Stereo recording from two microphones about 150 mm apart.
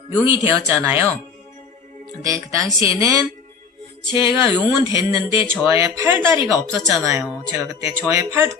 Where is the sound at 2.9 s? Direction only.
20° right (ahead or behind).